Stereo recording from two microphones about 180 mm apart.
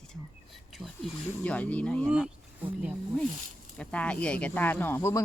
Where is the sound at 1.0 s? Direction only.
5° left (ahead or behind).